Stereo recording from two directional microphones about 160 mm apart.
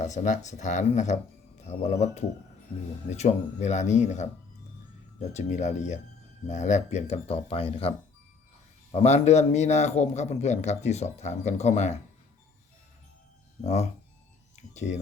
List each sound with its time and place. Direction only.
0.0 s a man's voice: 50° left (ahead or behind)
5.3 s a man's voice: 45° left (ahead or behind)
14.7 s speech: 45° left (ahead or behind)